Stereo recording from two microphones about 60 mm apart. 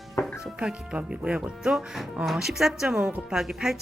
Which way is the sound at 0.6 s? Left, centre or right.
Centre.